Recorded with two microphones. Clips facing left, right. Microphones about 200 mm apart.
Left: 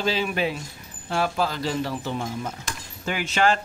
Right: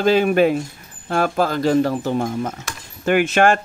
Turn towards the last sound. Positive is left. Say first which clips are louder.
# right 7 dB
turn(degrees=-55)  # may be behind; listen again after turning